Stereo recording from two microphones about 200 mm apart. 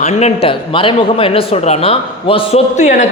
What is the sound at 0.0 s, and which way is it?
A man's voice, 35° left (ahead or behind).